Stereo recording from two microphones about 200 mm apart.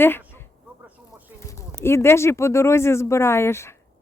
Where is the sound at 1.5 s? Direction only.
15° left (ahead or behind).